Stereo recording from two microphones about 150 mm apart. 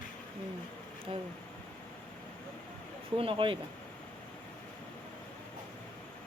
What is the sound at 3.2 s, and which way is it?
Speech, 35° right (ahead or behind).